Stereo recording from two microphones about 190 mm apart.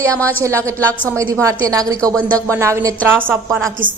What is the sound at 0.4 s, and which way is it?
A woman's voice, 15° right (ahead or behind).